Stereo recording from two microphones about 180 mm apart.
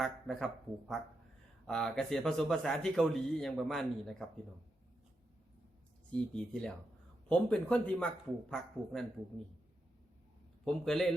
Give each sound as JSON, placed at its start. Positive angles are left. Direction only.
{"t": 0.0, "sound": "speech", "side_deg": 0}
{"t": 6.1, "sound": "speech", "side_deg": 5}
{"t": 10.7, "sound": "speech", "side_deg": 5}